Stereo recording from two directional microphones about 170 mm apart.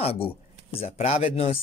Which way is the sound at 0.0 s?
35° left (ahead or behind).